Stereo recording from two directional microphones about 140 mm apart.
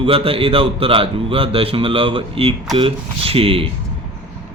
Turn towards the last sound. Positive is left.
turn(degrees=-40)  # may be behind; listen again after turning